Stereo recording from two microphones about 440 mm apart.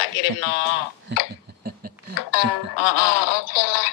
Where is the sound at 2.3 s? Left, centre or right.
Left.